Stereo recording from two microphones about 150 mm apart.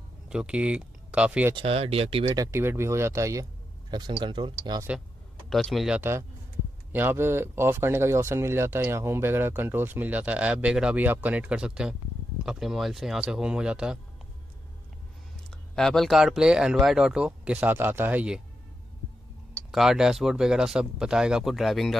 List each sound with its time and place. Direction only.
0.3 s speech: 5° right (ahead or behind)
1.5 s speech: 40° right (ahead or behind)
2.3 s speech: 20° right (ahead or behind)
4.1 s speech: 30° right (ahead or behind)
5.5 s speech: centre (ahead or behind)
15.7 s speech: 5° left (ahead or behind)
19.7 s speech: 5° right (ahead or behind)